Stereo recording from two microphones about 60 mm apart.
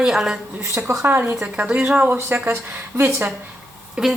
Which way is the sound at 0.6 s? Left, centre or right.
Right.